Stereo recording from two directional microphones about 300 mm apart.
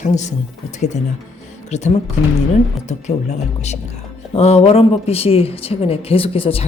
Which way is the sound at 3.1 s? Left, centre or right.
Left.